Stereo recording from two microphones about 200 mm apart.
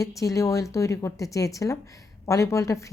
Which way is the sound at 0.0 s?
15° left (ahead or behind).